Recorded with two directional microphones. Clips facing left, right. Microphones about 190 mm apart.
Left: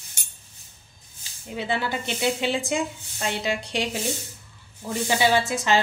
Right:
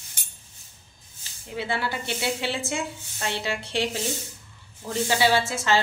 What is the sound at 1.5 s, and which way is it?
A woman's voice, 20° left (ahead or behind).